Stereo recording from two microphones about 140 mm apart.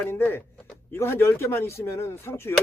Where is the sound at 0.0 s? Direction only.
15° left (ahead or behind).